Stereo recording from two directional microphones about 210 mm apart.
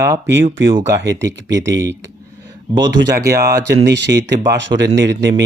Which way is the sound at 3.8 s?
55° right (ahead or behind).